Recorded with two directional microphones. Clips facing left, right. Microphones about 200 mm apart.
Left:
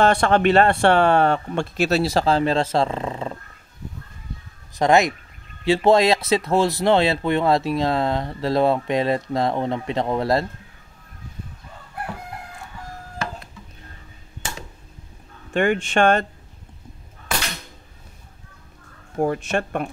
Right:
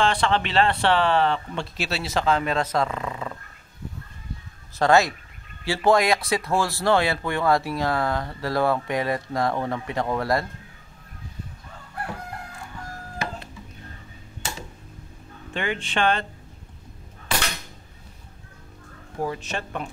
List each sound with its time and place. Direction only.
0.0 s speech: 45° left (ahead or behind); by 3.3 s 30° left (ahead or behind)
4.7 s speech: 20° left (ahead or behind)
15.5 s speech: 50° left (ahead or behind)
19.1 s speech: 50° left (ahead or behind)